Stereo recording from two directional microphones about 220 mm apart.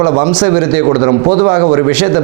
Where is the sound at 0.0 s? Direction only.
25° right (ahead or behind).